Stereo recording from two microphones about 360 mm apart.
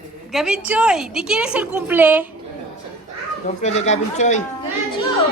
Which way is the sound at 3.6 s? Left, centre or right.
Centre.